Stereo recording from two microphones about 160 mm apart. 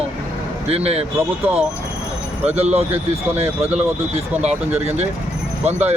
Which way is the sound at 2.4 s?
45° right (ahead or behind).